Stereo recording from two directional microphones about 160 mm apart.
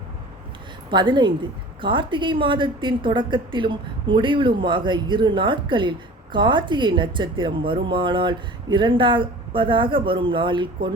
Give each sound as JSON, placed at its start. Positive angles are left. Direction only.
{"t": 0.9, "sound": "a woman's voice", "side_deg": -30}